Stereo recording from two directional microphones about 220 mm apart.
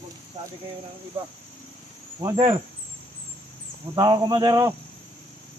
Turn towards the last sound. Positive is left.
turn(degrees=-15)  # may be behind; listen again after turning